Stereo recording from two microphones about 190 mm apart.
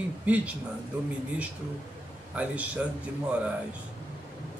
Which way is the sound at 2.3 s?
5° right (ahead or behind).